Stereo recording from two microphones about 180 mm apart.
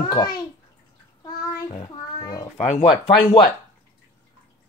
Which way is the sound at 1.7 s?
25° left (ahead or behind).